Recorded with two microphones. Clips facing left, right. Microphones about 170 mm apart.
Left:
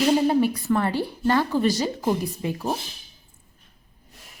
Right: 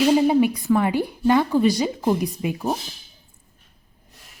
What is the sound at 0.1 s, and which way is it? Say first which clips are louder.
Speech: right 3 dB; 10° right (ahead or behind).